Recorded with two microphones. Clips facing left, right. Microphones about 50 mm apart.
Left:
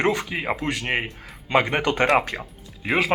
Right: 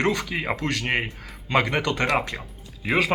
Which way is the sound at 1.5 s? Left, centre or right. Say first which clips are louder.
Left 2 dB; centre.